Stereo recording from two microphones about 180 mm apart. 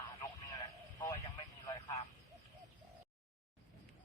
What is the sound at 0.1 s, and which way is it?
Vehicle, 20° left (ahead or behind).